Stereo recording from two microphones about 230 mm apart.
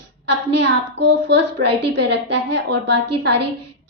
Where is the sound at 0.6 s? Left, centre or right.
Right.